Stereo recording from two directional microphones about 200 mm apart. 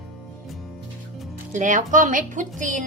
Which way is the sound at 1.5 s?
40° right (ahead or behind).